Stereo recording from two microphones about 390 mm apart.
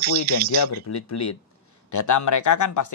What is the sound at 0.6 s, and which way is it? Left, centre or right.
Speech, left.